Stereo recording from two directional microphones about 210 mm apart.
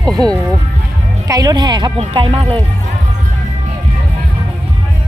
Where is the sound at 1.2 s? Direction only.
15° right (ahead or behind).